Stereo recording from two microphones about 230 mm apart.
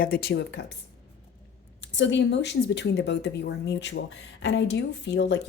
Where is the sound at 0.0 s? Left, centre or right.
Left.